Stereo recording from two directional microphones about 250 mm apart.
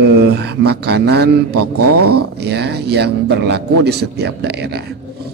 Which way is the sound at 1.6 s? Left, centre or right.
Right.